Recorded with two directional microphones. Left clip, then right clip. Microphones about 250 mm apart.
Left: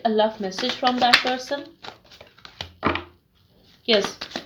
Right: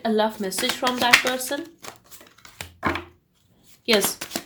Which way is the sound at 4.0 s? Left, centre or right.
Right.